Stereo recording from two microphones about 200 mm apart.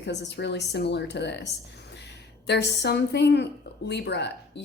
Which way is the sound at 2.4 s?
60° left (ahead or behind).